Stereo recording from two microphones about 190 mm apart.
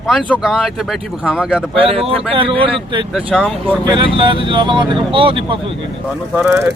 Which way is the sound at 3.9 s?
25° right (ahead or behind).